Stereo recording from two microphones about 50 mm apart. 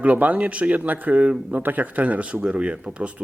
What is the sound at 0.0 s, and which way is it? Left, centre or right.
Speech, right.